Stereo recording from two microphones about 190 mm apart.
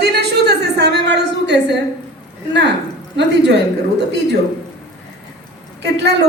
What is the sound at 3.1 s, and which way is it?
Speech, 65° right (ahead or behind).